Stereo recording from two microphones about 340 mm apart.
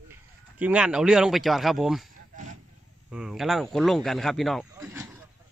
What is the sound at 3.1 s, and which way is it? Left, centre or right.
Speech, centre.